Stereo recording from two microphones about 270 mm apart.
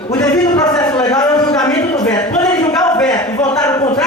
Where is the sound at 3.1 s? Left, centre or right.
Centre.